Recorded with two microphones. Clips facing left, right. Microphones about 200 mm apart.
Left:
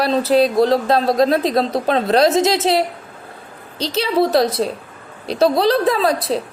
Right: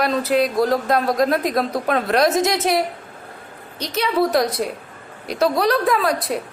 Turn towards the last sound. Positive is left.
turn(degrees=25)  # may be behind; listen again after turning